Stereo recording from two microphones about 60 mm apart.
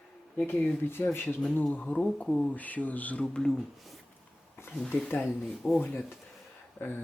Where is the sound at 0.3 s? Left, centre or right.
Left.